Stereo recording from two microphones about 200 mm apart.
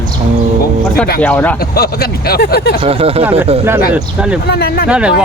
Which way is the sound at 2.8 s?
30° right (ahead or behind).